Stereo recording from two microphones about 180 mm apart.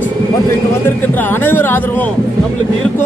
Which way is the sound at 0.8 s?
10° left (ahead or behind).